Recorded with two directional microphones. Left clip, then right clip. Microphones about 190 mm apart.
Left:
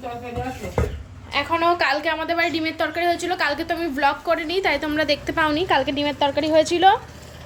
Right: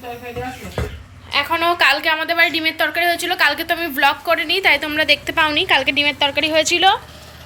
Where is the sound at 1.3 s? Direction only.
10° left (ahead or behind).